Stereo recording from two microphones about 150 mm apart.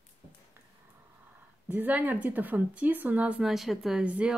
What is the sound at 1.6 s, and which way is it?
Speech, 10° right (ahead or behind).